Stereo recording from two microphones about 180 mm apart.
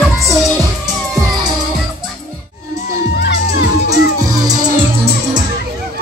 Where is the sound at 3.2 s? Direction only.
70° left (ahead or behind).